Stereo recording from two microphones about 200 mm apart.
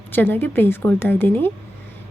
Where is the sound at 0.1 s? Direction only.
10° left (ahead or behind).